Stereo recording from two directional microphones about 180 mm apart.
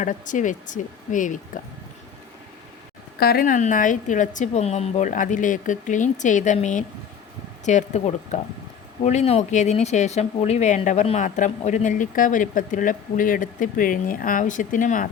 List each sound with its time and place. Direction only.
0.0 s speech: 45° left (ahead or behind)
3.2 s speech: 55° left (ahead or behind)